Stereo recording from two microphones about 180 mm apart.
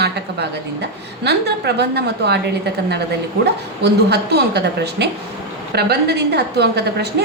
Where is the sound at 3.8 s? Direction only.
65° right (ahead or behind).